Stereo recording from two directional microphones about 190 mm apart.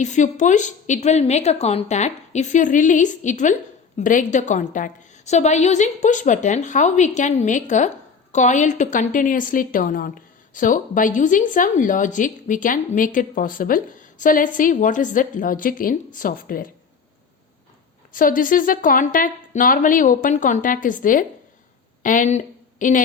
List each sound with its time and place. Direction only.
0.0 s a woman's voice: 40° left (ahead or behind)
18.1 s a woman's voice: 45° left (ahead or behind)